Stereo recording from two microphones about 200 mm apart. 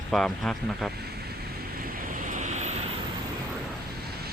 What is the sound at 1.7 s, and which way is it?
Waves, 40° right (ahead or behind).